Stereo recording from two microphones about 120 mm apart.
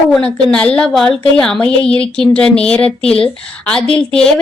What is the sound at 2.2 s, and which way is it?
Speech, 10° left (ahead or behind).